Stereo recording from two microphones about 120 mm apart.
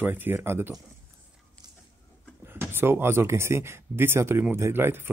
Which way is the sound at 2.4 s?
20° right (ahead or behind).